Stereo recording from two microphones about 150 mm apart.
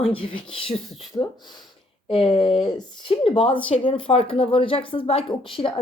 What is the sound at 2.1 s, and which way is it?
Speech, 35° left (ahead or behind).